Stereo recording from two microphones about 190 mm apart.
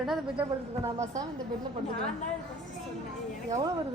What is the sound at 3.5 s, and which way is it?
Speech, 20° right (ahead or behind).